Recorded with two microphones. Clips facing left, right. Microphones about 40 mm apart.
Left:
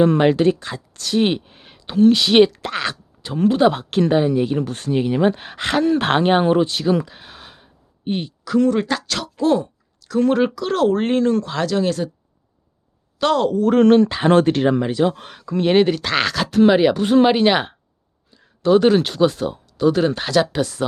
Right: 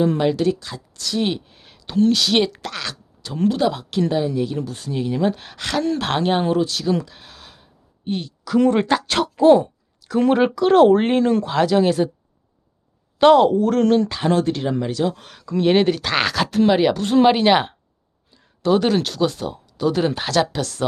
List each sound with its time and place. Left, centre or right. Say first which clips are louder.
0.0 s speech: left 4 dB; left
3.7 s speech: left 4 dB; left
4.7 s speech: left 6 dB; left
4.9 s speech: left 3 dB; left
8.5 s speech: right 1 dB; right
13.1 s speech: right 5 dB; right
13.7 s speech: left 4 dB; left
14.8 s speech: left 3 dB; left
15.3 s speech: even; centre
17.2 s speech: right 1 dB; centre
18.3 s a sound: left 3 dB; centre
19.1 s speech: left 4 dB; centre
19.8 s speech: left 3 dB; centre
20.5 s speech: left 4 dB; centre